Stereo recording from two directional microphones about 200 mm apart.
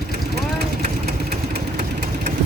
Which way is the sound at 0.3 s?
50° right (ahead or behind).